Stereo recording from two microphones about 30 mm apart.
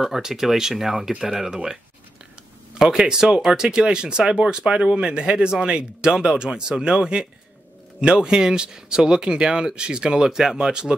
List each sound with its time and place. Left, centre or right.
0.0 s speech: centre
1.5 s speech: right
2.8 s speech: centre
4.9 s speech: right
10.2 s speech: centre